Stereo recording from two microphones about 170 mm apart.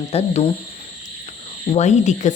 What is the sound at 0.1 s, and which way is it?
Speech, 35° left (ahead or behind).